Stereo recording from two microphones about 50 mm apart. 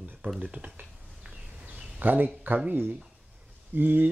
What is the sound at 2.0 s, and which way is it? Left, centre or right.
Speech, right.